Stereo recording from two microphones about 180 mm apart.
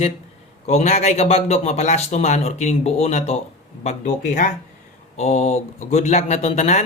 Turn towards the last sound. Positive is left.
turn(degrees=35)  # may be behind; listen again after turning